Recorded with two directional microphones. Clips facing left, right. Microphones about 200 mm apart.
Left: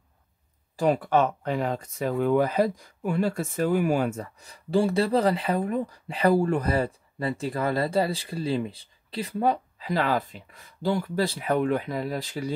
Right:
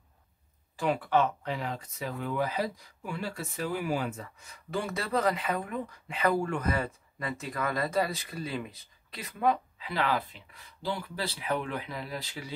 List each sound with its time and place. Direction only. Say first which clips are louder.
0.7 s speech: left 5 dB; 40° left (ahead or behind)